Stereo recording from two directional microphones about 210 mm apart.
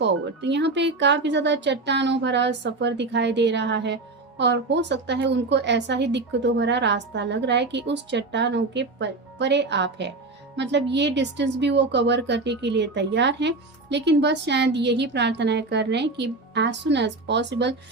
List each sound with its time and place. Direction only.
0.0 s speech: 55° right (ahead or behind)